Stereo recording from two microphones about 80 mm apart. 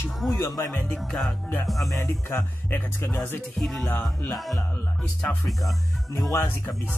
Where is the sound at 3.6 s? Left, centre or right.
Centre.